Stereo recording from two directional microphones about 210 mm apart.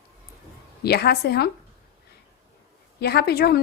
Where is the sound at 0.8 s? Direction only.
50° left (ahead or behind).